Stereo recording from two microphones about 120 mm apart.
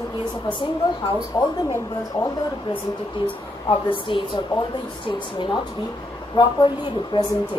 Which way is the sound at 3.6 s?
45° left (ahead or behind).